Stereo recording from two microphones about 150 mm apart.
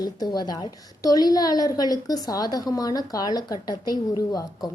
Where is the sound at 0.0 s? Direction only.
25° left (ahead or behind).